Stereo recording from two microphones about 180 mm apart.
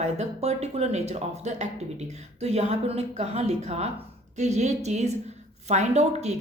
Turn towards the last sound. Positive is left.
turn(degrees=-40)  # may be behind; listen again after turning